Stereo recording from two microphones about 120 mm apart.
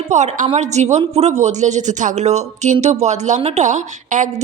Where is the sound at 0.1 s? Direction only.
80° right.